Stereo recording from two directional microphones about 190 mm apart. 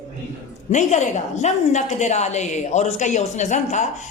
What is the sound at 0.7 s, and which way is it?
A woman's voice, 40° left (ahead or behind).